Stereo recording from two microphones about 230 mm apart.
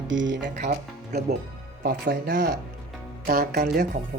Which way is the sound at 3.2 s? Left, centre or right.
Right.